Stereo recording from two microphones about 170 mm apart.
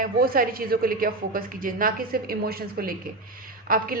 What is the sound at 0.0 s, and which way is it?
A woman's voice, 60° right (ahead or behind).